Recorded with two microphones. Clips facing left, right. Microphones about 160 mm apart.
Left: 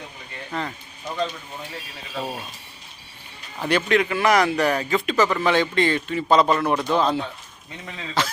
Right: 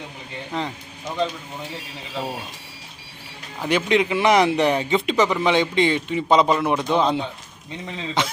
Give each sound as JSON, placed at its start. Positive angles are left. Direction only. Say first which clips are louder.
{"t": 0.5, "sound": "speech", "louder": "right 1 dB", "side_deg": -20}
{"t": 2.1, "sound": "speech", "louder": "right 1 dB", "side_deg": -5}
{"t": 3.6, "sound": "speech", "louder": "right 1 dB", "side_deg": -15}